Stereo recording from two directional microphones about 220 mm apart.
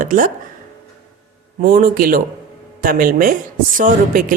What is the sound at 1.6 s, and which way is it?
A man's voice, 40° right (ahead or behind).